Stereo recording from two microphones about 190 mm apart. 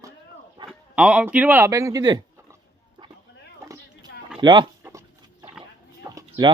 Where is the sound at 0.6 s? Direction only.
25° right (ahead or behind).